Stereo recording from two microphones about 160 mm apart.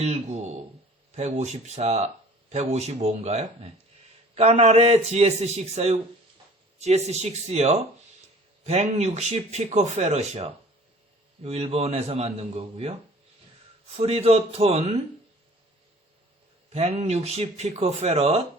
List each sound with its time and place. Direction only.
0.0 s a man's voice: 45° right (ahead or behind)
16.6 s speech: 40° right (ahead or behind)